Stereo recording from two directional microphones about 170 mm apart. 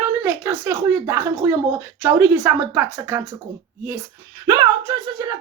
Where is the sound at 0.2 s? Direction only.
15° right (ahead or behind).